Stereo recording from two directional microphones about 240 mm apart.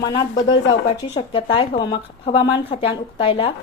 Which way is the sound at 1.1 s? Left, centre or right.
Left.